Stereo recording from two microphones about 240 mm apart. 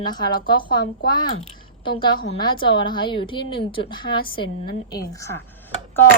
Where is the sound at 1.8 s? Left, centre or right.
Centre.